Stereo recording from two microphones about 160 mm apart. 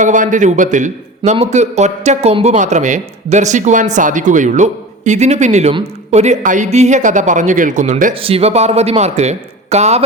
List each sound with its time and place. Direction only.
0.0 s a man's voice: 50° right (ahead or behind)
8.1 s speech: 35° right (ahead or behind)